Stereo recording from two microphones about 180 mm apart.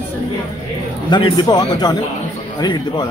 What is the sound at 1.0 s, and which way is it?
Speech, 25° left (ahead or behind).